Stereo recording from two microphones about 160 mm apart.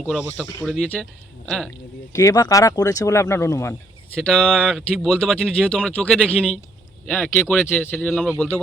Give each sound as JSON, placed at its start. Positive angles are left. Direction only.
{"t": 0.1, "sound": "speech", "side_deg": -5}
{"t": 2.1, "sound": "speech", "side_deg": 20}
{"t": 4.3, "sound": "a man's voice", "side_deg": 5}